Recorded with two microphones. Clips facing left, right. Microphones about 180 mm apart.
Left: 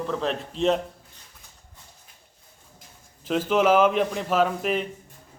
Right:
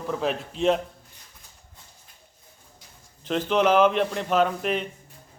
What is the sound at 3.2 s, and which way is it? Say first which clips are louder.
A man's voice: left 1 dB; 5° left (ahead or behind).